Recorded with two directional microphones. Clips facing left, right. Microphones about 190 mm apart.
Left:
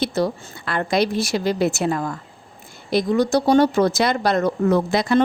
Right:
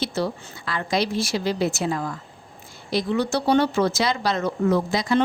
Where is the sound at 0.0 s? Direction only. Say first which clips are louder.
Left 4 dB; 60° left (ahead or behind).